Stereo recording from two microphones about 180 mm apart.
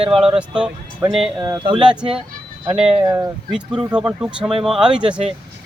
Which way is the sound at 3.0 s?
20° right (ahead or behind).